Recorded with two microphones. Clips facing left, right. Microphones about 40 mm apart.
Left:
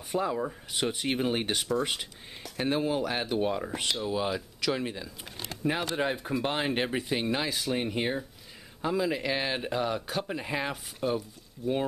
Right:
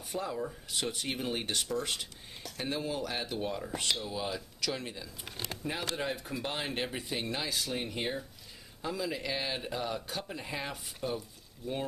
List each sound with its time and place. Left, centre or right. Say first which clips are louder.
0.1 s speech: left 6 dB; left
9.9 s speech: left 6 dB; centre